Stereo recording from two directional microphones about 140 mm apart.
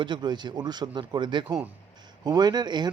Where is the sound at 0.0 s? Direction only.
35° right (ahead or behind).